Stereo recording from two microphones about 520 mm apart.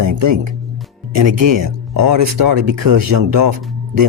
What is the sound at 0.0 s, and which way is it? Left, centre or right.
Speech, right.